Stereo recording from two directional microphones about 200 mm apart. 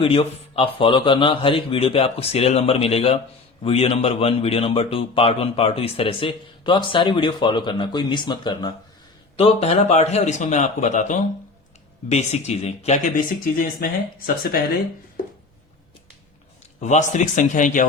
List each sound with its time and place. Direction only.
0.0 s a man's voice: 30° left (ahead or behind); by 13.8 s 45° left (ahead or behind)
16.8 s speech: 35° left (ahead or behind)